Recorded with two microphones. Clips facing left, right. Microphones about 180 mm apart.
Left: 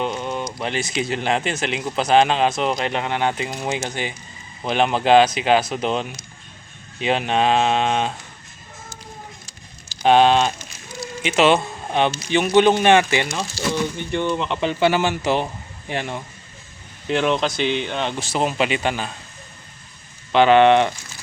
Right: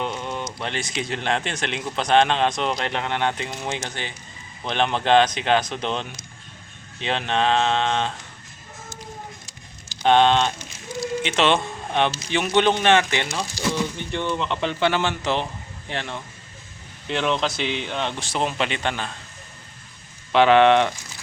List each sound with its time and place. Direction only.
0.0 s a sound: 5° left (ahead or behind)
0.6 s speech: 5° left (ahead or behind)
10.0 s speech: 5° left (ahead or behind)
13.6 s a sound: 15° right (ahead or behind)
13.9 s speech: 5° left (ahead or behind)
20.3 s speech: centre (ahead or behind)